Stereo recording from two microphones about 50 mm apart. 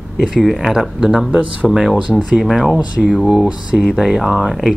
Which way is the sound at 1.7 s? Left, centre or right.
Centre.